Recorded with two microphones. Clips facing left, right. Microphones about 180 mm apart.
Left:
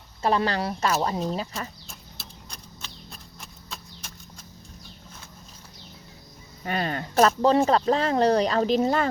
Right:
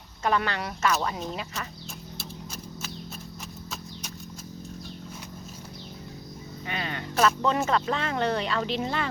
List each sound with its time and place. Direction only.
0.2 s speech: 30° left (ahead or behind)
2.1 s a sound: 5° right (ahead or behind)
6.7 s speech: 45° left (ahead or behind)